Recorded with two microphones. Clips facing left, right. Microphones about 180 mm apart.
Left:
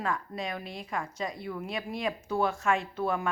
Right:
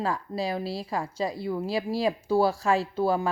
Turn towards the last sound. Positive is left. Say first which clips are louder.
# right 5 dB
turn(degrees=-30)  # may be behind; listen again after turning